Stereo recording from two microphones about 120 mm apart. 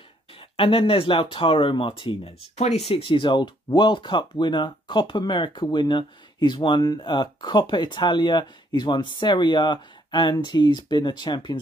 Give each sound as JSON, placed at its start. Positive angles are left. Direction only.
{"t": 0.4, "sound": "speech", "side_deg": 45}
{"t": 2.9, "sound": "speech", "side_deg": 50}